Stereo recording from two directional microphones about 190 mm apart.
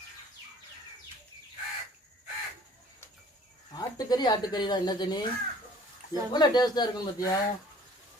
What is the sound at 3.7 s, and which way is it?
Speech, 20° left (ahead or behind).